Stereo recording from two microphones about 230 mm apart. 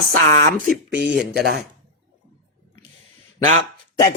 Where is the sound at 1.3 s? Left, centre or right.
Right.